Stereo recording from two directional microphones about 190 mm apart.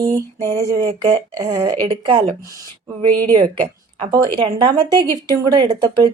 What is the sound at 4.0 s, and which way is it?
A woman's voice, 25° right (ahead or behind).